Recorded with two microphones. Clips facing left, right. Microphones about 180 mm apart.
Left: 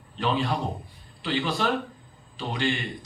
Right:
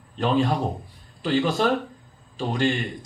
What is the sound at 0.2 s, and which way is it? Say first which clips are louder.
A man's voice: right 4 dB; 45° right (ahead or behind).